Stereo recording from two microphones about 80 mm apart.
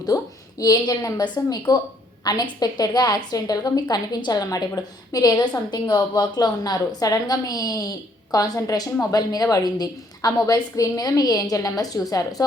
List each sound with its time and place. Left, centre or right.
0.1 s a woman's voice: left